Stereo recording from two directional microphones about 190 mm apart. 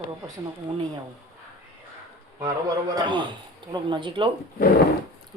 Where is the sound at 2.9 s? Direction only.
25° right (ahead or behind).